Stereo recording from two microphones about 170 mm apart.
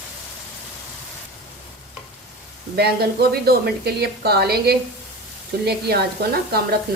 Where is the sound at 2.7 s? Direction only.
70° right (ahead or behind).